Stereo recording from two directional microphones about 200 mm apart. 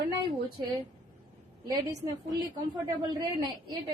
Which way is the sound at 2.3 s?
20° right (ahead or behind).